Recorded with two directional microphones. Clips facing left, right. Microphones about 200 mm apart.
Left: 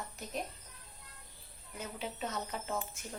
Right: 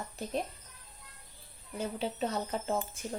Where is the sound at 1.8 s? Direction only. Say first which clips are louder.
Right 7 dB; 30° right (ahead or behind).